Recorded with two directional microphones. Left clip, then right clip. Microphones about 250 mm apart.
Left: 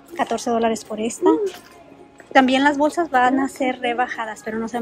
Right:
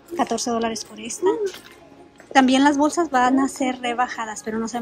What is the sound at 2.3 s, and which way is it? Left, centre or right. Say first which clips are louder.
A woman's voice: left 1 dB; centre.